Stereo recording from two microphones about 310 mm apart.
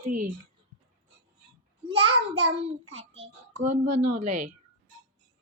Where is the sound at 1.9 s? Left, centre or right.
Centre.